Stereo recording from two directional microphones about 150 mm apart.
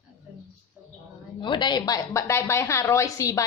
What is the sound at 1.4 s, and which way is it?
A woman's voice, 30° left (ahead or behind).